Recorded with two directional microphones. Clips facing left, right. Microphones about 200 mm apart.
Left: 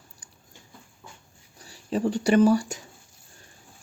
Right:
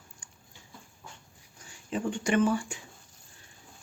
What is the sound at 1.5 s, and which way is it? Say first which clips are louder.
Speech: left 6 dB; 35° left (ahead or behind).